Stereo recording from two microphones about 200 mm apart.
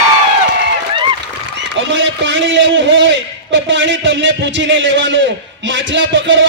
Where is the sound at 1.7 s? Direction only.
65° right (ahead or behind).